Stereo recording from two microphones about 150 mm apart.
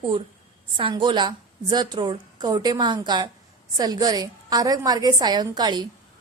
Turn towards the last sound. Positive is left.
turn(degrees=-25)  # may be behind; listen again after turning